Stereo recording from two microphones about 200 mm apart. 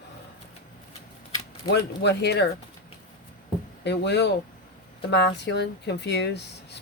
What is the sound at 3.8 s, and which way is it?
Speech, 60° left (ahead or behind).